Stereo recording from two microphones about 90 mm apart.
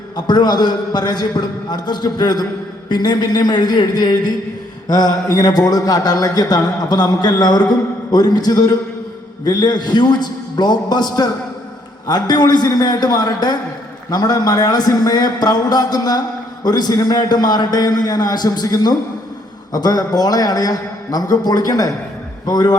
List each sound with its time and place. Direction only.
0.3 s a man's voice: 55° left (ahead or behind)